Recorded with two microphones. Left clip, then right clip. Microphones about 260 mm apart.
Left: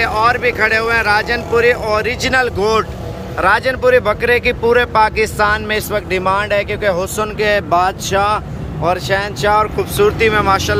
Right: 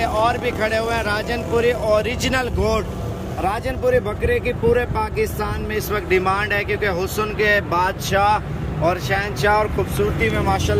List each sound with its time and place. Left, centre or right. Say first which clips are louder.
0.0 s speech: left 6 dB; centre